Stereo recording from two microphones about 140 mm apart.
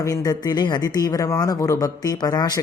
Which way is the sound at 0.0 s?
25° left (ahead or behind).